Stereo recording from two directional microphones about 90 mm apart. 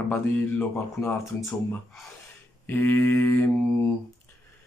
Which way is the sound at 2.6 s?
25° left (ahead or behind).